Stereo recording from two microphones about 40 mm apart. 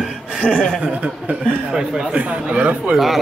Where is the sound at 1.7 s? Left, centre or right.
Centre.